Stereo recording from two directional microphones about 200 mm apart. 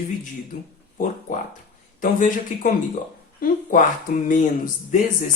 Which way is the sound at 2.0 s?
40° left (ahead or behind).